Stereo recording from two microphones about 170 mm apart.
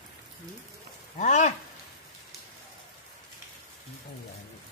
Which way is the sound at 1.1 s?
45° left (ahead or behind).